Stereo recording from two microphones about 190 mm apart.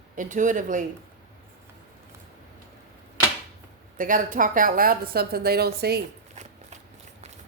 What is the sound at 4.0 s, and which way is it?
A woman's voice, 45° right (ahead or behind).